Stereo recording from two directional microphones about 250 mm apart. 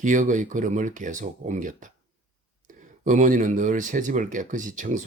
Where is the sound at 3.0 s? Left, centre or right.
Right.